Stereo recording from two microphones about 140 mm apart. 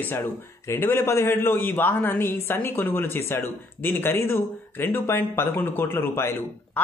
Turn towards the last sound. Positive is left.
turn(degrees=15)  # may be behind; listen again after turning